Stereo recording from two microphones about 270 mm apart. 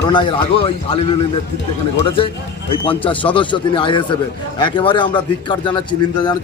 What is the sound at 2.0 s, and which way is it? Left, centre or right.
Speech, centre.